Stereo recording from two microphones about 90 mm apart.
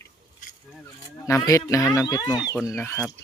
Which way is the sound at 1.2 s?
35° left (ahead or behind).